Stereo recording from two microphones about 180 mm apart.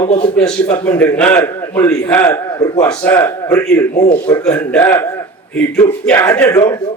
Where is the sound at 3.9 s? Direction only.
50° left (ahead or behind).